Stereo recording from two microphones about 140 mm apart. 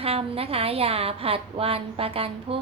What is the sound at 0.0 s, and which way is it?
A woman's voice, 45° right (ahead or behind).